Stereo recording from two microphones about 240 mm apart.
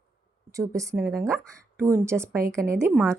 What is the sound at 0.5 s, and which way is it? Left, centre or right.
A woman's voice, centre.